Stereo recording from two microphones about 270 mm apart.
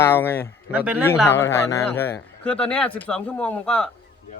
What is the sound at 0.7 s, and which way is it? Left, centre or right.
Speech, centre.